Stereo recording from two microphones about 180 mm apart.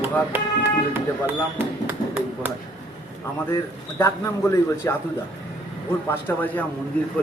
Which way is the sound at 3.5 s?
15° left (ahead or behind).